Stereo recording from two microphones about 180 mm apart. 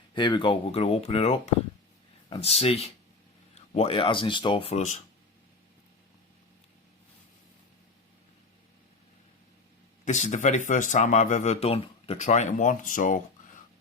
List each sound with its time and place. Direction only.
0.1 s speech: 25° left (ahead or behind)
10.1 s speech: 40° left (ahead or behind)